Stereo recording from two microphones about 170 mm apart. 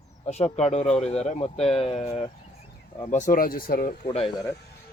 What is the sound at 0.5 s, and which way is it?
Speech, 40° left (ahead or behind).